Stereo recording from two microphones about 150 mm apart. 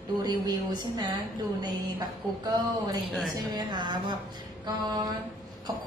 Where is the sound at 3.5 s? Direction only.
30° right (ahead or behind).